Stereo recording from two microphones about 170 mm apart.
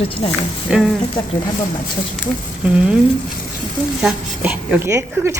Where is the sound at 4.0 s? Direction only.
5° right (ahead or behind).